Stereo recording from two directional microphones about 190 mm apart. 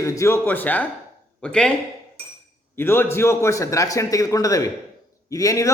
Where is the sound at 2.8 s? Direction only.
10° left (ahead or behind).